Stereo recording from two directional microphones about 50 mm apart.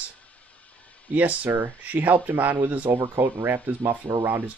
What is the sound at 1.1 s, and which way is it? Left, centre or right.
Speech, right.